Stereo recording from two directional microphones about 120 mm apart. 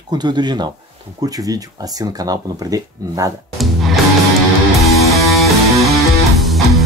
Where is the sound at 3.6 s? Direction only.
Centre (ahead or behind).